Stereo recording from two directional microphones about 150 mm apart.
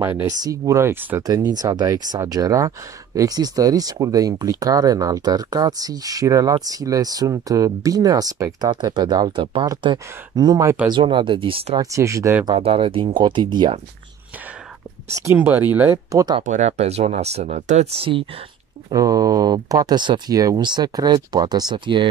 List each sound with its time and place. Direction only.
0.0 s speech: 15° right (ahead or behind); by 11.8 s 35° right (ahead or behind)
11.8 s speech: 20° right (ahead or behind)
12.4 s speech: 40° right (ahead or behind)
15.3 s speech: 10° right (ahead or behind)
16.4 s speech: 50° right (ahead or behind)
18.9 s speech: 25° right (ahead or behind)